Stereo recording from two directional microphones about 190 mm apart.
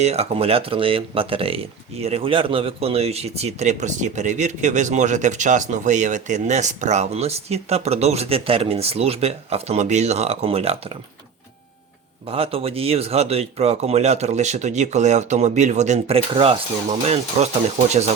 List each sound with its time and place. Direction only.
0.0 s speech: 35° right (ahead or behind)
12.3 s speech: 30° right (ahead or behind)